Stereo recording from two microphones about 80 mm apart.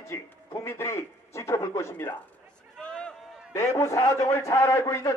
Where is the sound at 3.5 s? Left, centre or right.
Left.